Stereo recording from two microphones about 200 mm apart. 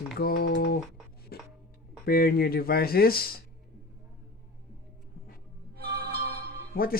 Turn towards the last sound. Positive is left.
turn(degrees=50)  # may be behind; listen again after turning